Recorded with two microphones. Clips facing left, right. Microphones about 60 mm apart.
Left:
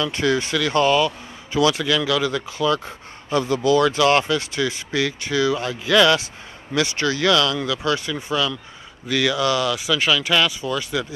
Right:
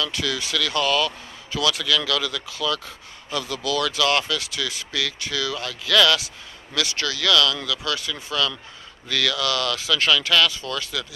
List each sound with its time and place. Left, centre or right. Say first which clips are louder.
0.0 s speech: left 6 dB; left